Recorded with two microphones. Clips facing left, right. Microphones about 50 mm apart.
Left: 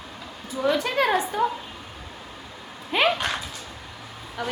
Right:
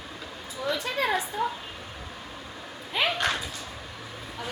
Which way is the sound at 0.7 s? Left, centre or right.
Left.